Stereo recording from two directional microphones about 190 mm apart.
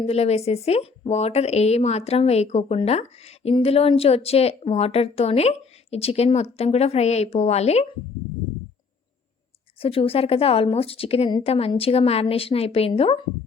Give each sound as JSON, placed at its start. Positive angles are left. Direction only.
{"t": 0.0, "sound": "a woman's voice", "side_deg": 30}
{"t": 9.8, "sound": "a woman's voice", "side_deg": 30}